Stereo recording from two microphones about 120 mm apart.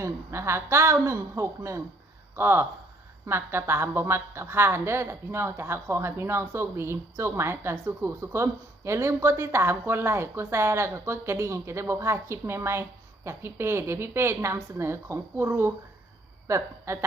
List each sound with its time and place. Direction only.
0.0 s a woman's voice: 20° right (ahead or behind)